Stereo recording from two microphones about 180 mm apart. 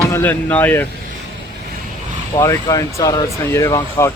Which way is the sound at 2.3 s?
15° left (ahead or behind).